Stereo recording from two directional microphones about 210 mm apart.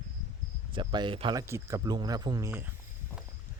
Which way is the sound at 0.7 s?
20° right (ahead or behind).